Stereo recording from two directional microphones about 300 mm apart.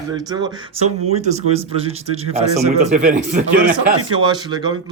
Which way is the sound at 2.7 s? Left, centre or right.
Right.